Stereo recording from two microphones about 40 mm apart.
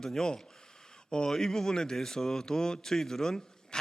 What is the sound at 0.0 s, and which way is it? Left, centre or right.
A man's voice, centre.